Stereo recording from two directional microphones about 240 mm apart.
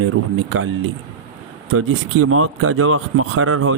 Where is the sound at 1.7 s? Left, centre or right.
Right.